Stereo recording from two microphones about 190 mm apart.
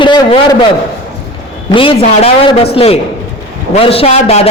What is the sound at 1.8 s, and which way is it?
A man's voice, 30° left (ahead or behind).